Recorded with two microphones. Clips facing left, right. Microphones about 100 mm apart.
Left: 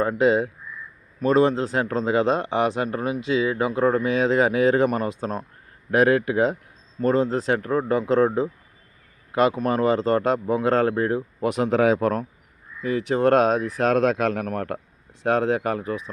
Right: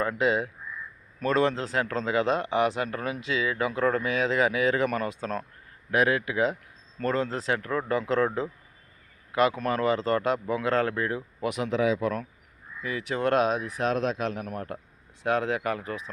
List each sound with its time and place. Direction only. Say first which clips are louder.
0.0 s speech: left 6 dB; 30° left (ahead or behind)
5.9 s speech: left 6 dB; 35° left (ahead or behind)
11.7 s speech: left 6 dB; 50° left (ahead or behind)
12.8 s speech: left 7 dB; 35° left (ahead or behind)
13.9 s speech: left 7 dB; 55° left (ahead or behind)
15.2 s speech: left 5 dB; 30° left (ahead or behind)